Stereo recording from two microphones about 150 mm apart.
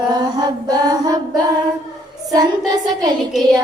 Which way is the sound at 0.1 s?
25° right (ahead or behind).